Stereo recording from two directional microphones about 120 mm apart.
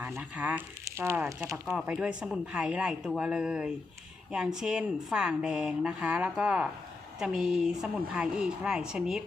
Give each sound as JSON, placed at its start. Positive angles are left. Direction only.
{"t": 0.0, "sound": "a woman's voice", "side_deg": -15}